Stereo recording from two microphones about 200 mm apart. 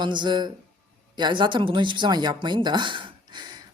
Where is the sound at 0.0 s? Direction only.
25° right (ahead or behind).